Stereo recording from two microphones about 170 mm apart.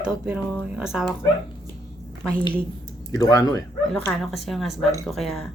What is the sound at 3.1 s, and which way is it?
Speech, 20° left (ahead or behind).